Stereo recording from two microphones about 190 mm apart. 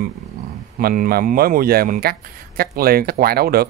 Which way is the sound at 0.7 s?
50° right (ahead or behind).